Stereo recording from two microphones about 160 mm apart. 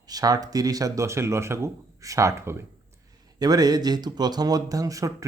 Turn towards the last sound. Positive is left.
turn(degrees=-20)  # may be behind; listen again after turning